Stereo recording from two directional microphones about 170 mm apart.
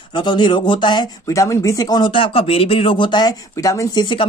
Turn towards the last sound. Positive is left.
turn(degrees=25)  # may be behind; listen again after turning